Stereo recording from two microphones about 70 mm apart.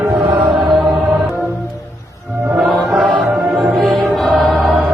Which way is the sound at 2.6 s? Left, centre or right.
Centre.